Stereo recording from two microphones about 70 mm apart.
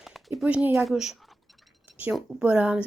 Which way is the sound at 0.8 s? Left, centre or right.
Centre.